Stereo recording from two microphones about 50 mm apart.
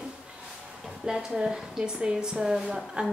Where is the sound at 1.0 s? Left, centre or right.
Centre.